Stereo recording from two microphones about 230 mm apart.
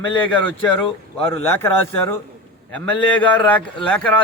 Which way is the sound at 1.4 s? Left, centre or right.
Centre.